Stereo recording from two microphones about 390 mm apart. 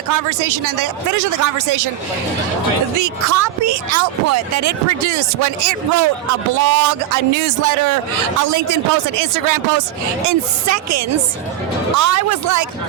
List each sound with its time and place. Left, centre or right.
0.1 s speech: right
3.0 s speech: right
10.2 s speech: right